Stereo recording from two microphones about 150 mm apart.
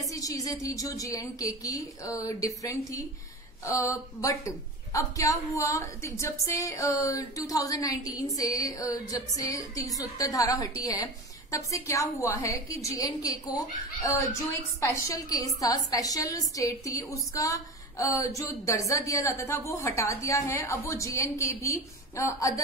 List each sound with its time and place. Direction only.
0.1 s a woman's voice: 25° left (ahead or behind)